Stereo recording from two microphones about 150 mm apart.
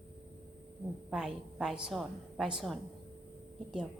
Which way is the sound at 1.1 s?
5° right (ahead or behind).